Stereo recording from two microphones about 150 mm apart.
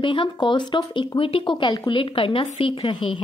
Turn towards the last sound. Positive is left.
turn(degrees=35)  # may be behind; listen again after turning